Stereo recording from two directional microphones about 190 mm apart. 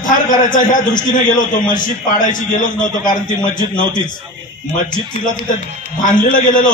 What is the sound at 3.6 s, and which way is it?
Speech, 45° left (ahead or behind).